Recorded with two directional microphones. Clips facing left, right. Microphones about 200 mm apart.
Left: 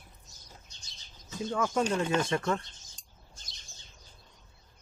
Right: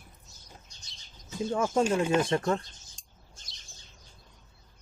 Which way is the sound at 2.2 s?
30° right (ahead or behind).